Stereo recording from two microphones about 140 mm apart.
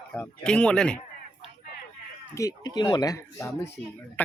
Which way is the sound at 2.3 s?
25° left (ahead or behind).